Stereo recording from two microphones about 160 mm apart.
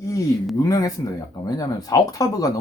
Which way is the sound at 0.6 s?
20° left (ahead or behind).